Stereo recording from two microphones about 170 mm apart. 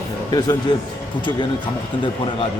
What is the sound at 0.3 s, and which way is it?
Speech, 20° left (ahead or behind).